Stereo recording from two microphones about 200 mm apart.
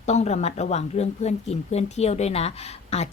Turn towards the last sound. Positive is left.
turn(degrees=30)  # may be behind; listen again after turning